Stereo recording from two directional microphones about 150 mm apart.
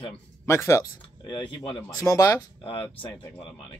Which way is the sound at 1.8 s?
20° left (ahead or behind).